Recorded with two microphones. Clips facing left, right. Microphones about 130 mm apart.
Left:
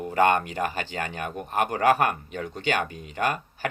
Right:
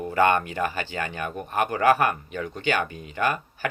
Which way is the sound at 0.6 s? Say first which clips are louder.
Right 1 dB; 40° right (ahead or behind).